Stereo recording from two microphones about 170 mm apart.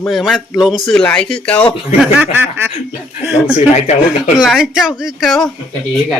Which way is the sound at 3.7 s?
40° left (ahead or behind).